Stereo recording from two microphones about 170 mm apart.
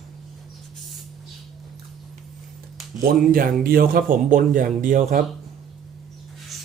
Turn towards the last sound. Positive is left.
turn(degrees=0)  # may be behind; listen again after turning